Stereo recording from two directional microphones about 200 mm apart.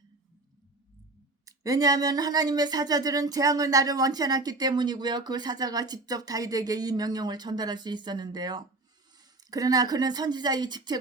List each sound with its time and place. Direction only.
1.5 s a woman's voice: 15° right (ahead or behind)